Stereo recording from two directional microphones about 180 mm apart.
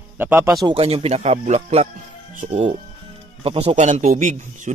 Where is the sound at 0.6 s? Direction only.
30° right (ahead or behind).